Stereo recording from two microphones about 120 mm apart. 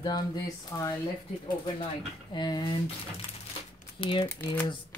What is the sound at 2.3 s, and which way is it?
Speech, 35° left (ahead or behind).